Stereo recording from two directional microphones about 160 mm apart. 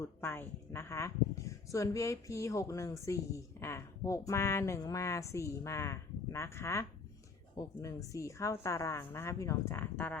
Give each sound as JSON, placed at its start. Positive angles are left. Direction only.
{"t": 0.2, "sound": "a woman's voice", "side_deg": 15}